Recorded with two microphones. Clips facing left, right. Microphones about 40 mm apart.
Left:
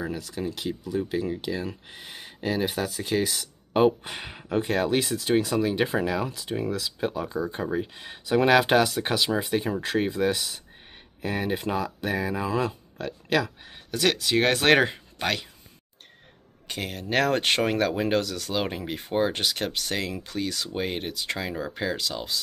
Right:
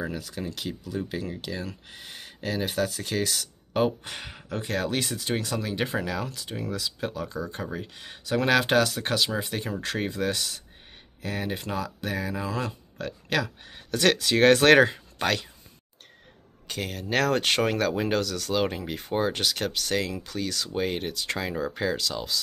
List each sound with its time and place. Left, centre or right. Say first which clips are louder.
0.0 s speech: left 2 dB; centre
16.6 s speech: even; centre